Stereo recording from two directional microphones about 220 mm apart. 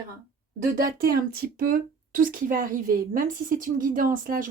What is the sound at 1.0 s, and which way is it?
Speech, 45° right (ahead or behind).